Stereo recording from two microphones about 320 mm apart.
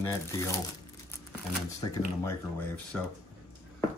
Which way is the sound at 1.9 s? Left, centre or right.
Centre.